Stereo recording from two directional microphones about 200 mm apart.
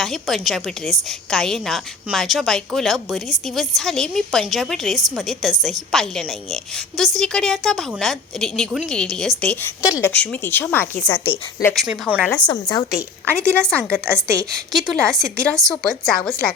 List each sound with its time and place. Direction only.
0.0 s a woman's voice: centre (ahead or behind)
12.5 s a woman's voice: 20° left (ahead or behind)
13.5 s a woman's voice: 5° left (ahead or behind)
14.2 s a woman's voice: 15° right (ahead or behind)
14.7 s a woman's voice: centre (ahead or behind)